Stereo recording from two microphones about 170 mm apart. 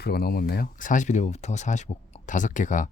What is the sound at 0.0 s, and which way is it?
Speech, 65° left (ahead or behind).